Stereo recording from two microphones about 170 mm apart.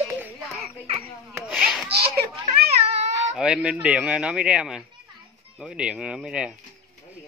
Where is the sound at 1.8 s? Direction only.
70° right (ahead or behind).